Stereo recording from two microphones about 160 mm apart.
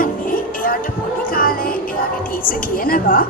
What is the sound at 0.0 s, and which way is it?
Music, 65° left (ahead or behind).